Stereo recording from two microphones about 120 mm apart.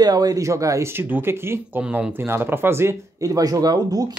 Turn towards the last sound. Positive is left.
turn(degrees=-30)  # may be behind; listen again after turning